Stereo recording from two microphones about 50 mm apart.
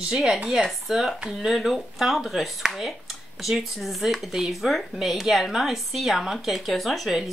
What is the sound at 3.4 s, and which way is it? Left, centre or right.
Speech, centre.